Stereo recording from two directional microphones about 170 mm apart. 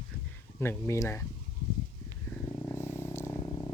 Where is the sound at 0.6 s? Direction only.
15° left (ahead or behind).